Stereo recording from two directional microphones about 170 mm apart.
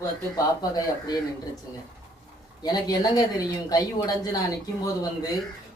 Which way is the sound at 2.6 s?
25° left (ahead or behind).